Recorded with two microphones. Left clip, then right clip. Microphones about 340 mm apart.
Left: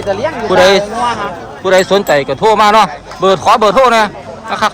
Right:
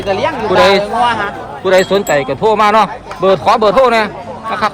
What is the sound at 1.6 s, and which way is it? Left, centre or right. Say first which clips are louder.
A man's voice: left 1 dB; centre.